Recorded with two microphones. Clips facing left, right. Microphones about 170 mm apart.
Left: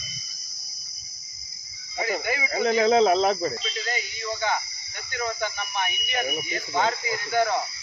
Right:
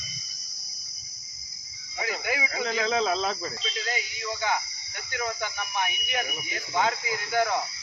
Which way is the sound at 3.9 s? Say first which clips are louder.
Left 2 dB; 10° right (ahead or behind).